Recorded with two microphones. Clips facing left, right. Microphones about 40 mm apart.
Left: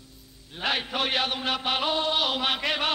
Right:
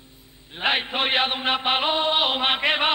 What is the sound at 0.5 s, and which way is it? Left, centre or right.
Mantra, right.